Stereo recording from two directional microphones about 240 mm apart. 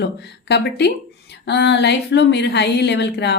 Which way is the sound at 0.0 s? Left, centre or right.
Left.